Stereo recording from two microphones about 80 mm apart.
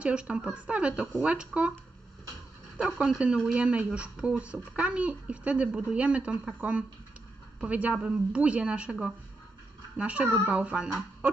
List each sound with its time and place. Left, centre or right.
0.0 s a woman's voice: centre
2.8 s a woman's voice: centre